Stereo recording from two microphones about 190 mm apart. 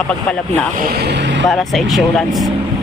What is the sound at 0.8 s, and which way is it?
Speech, 55° right (ahead or behind).